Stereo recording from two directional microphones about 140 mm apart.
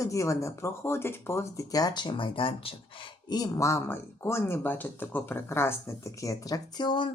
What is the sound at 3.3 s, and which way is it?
Speech, 25° left (ahead or behind).